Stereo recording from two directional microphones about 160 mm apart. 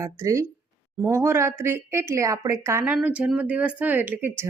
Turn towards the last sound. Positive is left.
turn(degrees=-15)  # may be behind; listen again after turning